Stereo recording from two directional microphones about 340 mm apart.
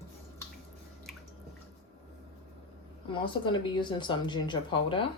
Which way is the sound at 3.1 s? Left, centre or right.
Centre.